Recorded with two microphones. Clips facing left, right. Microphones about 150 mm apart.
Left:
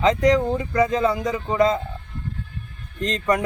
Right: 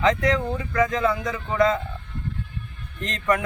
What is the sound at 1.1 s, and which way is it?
Speech, 10° left (ahead or behind).